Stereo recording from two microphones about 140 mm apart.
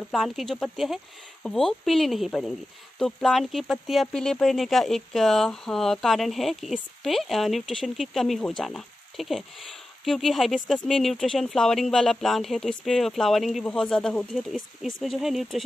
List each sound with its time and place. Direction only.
0.1 s speech: centre (ahead or behind)